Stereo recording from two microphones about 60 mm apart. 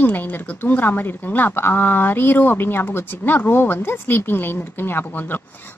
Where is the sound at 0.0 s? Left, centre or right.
Left.